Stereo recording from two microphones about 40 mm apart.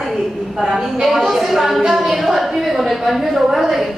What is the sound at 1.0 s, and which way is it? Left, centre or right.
A woman's voice, centre.